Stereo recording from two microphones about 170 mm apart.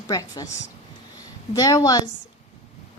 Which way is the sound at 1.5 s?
20° left (ahead or behind).